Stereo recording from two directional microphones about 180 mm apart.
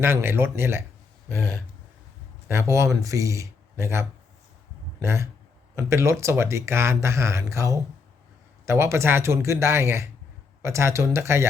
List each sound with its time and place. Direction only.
0.0 s speech: 15° right (ahead or behind)
2.5 s speech: 15° right (ahead or behind)